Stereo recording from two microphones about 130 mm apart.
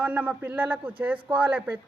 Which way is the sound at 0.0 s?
10° right (ahead or behind).